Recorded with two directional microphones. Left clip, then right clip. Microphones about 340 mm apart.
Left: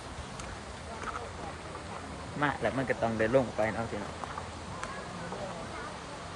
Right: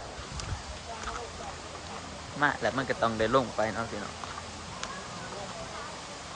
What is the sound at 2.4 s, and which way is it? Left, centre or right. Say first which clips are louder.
Speech: right 3 dB; centre.